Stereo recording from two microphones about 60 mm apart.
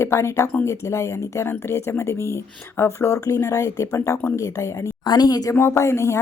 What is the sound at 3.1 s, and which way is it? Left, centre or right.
A woman's voice, left.